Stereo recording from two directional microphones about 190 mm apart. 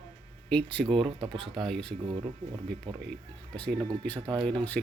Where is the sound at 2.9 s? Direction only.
25° right (ahead or behind).